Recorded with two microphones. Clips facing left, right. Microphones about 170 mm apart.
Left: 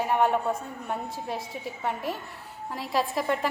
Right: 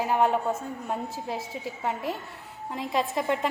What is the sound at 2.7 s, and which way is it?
Speech, 20° right (ahead or behind).